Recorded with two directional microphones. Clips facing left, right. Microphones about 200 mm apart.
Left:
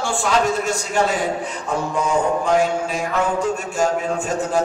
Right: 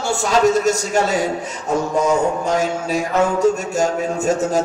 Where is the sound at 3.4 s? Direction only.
40° right (ahead or behind).